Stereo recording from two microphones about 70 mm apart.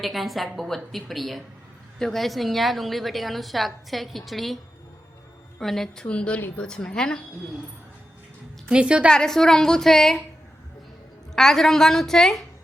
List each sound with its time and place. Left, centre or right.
0.0 s a woman's voice: centre
5.5 s a woman's voice: centre
8.7 s a woman's voice: centre
9.0 s a woman's voice: centre
11.3 s a woman's voice: centre